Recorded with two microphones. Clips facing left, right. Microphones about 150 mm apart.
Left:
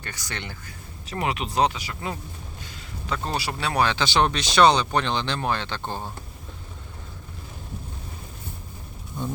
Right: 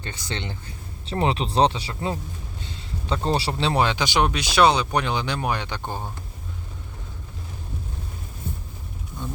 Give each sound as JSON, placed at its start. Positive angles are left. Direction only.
{"t": 0.0, "sound": "speech", "side_deg": -25}